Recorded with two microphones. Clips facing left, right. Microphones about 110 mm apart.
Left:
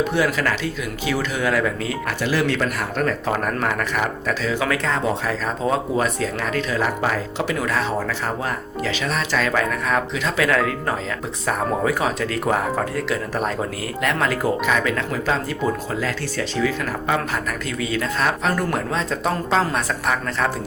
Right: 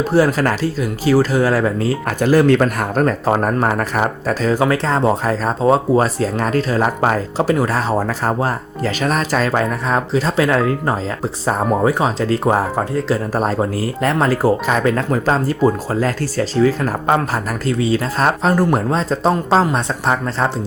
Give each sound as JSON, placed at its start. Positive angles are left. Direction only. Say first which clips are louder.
{"t": 0.0, "sound": "speech", "louder": "right 6 dB", "side_deg": -35}